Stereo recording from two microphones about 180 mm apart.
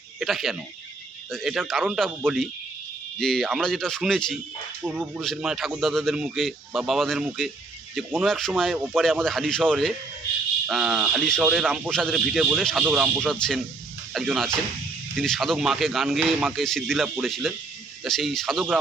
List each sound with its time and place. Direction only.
0.2 s speech: centre (ahead or behind)